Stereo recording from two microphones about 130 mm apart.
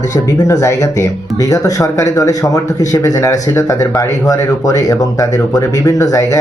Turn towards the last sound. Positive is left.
turn(degrees=25)  # may be behind; listen again after turning